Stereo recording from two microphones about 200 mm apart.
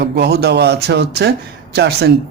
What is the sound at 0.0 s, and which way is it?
Speech, 55° right (ahead or behind).